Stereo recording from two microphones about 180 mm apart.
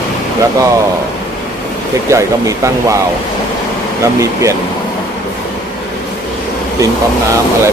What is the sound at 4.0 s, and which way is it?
Speech, 15° right (ahead or behind).